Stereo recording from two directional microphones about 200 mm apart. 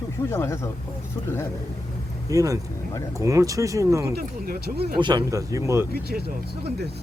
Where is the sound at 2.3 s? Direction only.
15° right (ahead or behind).